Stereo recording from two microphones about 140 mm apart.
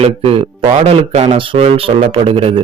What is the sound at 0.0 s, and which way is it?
Speech, 40° right (ahead or behind).